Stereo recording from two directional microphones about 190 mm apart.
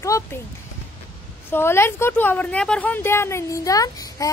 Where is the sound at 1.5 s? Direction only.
15° left (ahead or behind).